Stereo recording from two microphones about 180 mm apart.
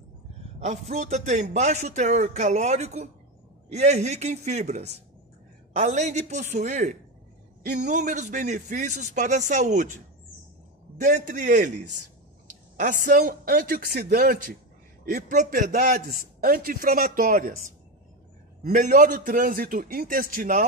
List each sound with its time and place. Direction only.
0.6 s a man's voice: 40° right (ahead or behind)
11.0 s a man's voice: 45° right (ahead or behind)
18.6 s a man's voice: 45° right (ahead or behind)